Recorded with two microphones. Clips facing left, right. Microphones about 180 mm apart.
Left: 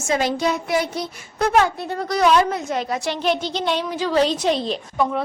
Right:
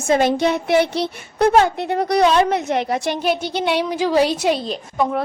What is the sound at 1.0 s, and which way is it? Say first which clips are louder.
Speech: right 6 dB; 70° right (ahead or behind).